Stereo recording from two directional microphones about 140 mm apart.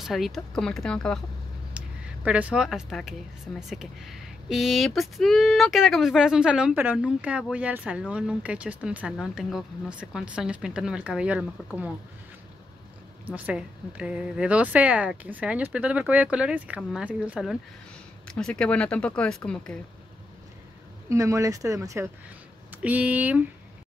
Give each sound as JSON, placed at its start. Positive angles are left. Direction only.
{"t": 0.0, "sound": "speech", "side_deg": 0}
{"t": 1.8, "sound": "a sound", "side_deg": -10}
{"t": 2.2, "sound": "speech", "side_deg": -10}
{"t": 13.3, "sound": "speech", "side_deg": -10}
{"t": 18.2, "sound": "speech", "side_deg": 5}
{"t": 21.1, "sound": "speech", "side_deg": -20}
{"t": 22.8, "sound": "speech", "side_deg": -10}